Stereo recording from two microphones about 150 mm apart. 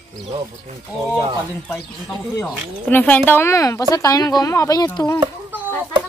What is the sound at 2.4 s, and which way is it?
Speech, 10° left (ahead or behind).